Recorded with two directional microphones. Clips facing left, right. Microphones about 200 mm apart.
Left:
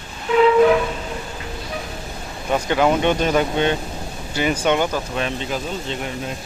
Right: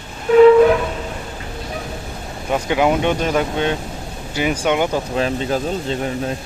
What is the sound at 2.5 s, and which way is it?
Speech, 10° right (ahead or behind).